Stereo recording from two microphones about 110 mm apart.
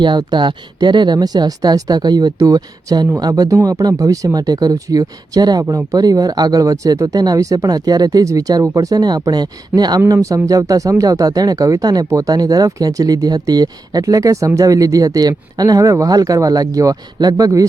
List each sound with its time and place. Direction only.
0.0 s speech: 40° right (ahead or behind)